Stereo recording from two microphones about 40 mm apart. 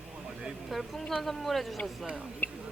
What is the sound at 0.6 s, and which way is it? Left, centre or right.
Speech, centre.